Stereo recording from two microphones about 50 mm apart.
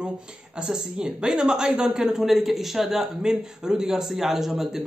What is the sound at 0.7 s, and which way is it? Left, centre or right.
Speech, centre.